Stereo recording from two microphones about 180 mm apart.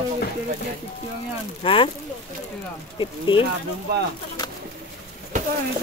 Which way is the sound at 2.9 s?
25° left (ahead or behind).